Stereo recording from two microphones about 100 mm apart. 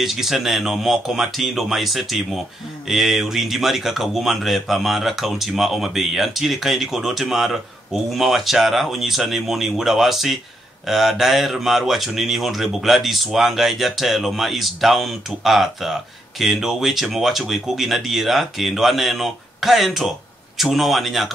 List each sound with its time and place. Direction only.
0.0 s speech: 5° right (ahead or behind)